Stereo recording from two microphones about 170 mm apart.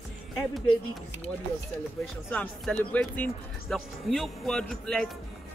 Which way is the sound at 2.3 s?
10° left (ahead or behind).